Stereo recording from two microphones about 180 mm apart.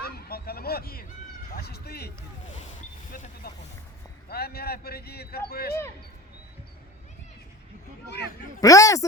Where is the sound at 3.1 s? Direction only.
50° left (ahead or behind).